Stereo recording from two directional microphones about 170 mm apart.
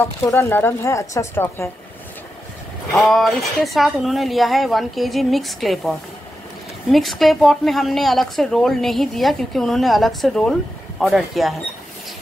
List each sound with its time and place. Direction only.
0.0 s a woman's voice: 15° left (ahead or behind)
2.9 s speech: centre (ahead or behind)